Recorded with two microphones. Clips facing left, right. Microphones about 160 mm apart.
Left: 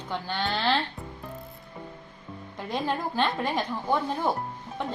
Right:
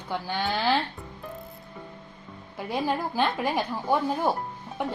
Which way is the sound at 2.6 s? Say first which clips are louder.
Right 2 dB; 10° right (ahead or behind).